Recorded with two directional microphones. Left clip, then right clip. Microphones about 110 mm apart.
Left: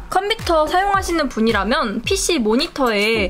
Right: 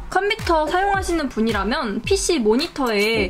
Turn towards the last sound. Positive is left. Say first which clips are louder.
# left 2 dB
turn(degrees=35)  # may be behind; listen again after turning